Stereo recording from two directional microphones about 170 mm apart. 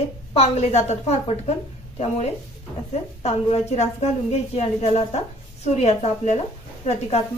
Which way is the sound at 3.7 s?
40° left (ahead or behind).